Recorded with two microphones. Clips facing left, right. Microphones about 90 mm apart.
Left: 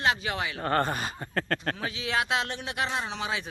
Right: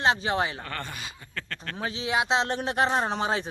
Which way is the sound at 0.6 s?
40° left (ahead or behind).